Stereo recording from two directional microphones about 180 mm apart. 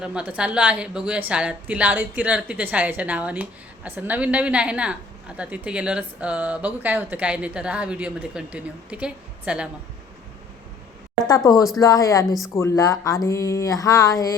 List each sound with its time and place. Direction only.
0.0 s speech: 5° right (ahead or behind)
11.3 s speech: 20° left (ahead or behind)